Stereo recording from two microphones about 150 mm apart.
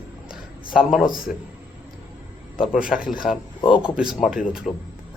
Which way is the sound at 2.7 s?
5° right (ahead or behind).